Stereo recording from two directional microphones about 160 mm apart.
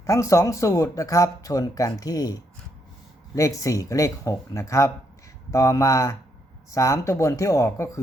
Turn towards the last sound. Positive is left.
turn(degrees=20)  # may be behind; listen again after turning